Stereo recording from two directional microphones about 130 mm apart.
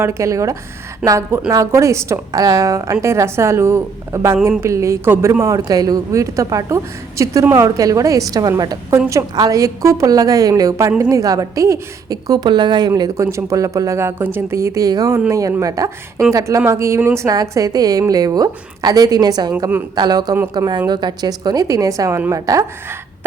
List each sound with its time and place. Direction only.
0.0 s a woman's voice: 20° right (ahead or behind)
12.9 s a woman's voice: 20° right (ahead or behind)
19.5 s a woman's voice: 20° right (ahead or behind)
20.0 s a man's voice: 30° right (ahead or behind)